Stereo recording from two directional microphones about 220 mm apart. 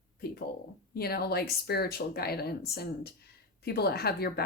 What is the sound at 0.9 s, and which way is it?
Speech, 45° left (ahead or behind).